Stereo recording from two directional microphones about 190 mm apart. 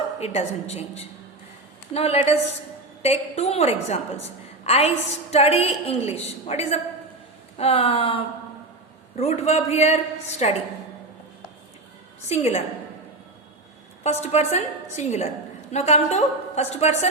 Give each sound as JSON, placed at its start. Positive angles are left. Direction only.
{"t": 0.2, "sound": "a woman's voice", "side_deg": 35}
{"t": 12.3, "sound": "a woman's voice", "side_deg": 35}
{"t": 14.0, "sound": "a woman's voice", "side_deg": 35}